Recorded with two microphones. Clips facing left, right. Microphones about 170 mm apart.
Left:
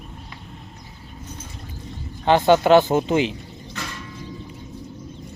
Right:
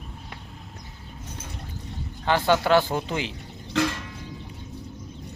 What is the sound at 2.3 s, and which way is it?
Speech, 20° left (ahead or behind).